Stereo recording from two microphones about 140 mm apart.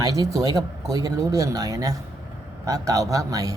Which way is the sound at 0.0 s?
25° right (ahead or behind).